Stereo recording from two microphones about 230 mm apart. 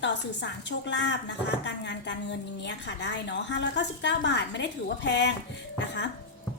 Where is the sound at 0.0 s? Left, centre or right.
Left.